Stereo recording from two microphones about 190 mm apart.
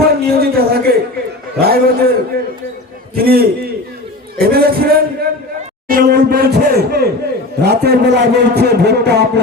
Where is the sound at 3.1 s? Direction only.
50° right (ahead or behind).